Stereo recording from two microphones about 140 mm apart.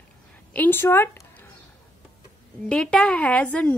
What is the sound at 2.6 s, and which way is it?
A woman's voice, 5° left (ahead or behind).